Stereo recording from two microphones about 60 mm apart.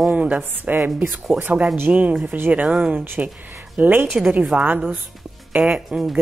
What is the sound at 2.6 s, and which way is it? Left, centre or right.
Speech, centre.